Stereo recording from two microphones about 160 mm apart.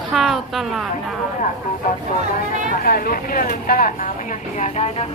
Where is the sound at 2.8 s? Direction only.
65° left (ahead or behind).